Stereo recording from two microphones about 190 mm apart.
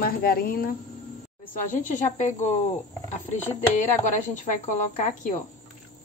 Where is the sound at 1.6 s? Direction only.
45° left (ahead or behind).